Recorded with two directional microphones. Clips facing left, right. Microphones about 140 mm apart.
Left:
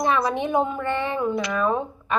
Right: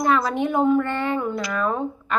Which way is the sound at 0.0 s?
20° left (ahead or behind).